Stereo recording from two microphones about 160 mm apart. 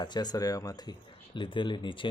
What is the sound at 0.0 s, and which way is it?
Speech, 25° left (ahead or behind).